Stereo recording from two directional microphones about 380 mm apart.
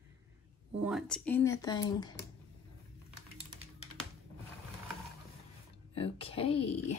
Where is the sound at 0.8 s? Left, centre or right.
Centre.